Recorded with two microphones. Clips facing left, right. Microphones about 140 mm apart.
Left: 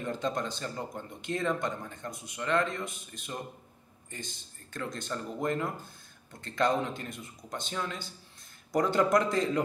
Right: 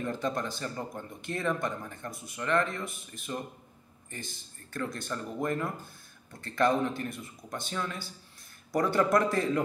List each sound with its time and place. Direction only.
0.0 s speech: 20° left (ahead or behind)